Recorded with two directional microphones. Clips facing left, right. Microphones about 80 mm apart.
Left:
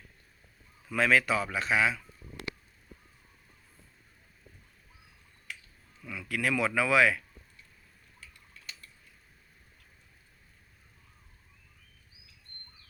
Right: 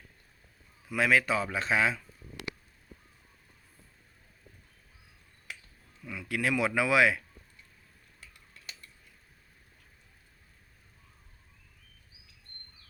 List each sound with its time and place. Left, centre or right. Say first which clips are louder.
0.9 s a man's voice: even; centre
1.2 s speech: even; right
6.1 s speech: even; right